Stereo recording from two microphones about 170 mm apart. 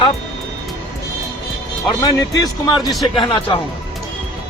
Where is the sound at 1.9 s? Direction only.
20° left (ahead or behind).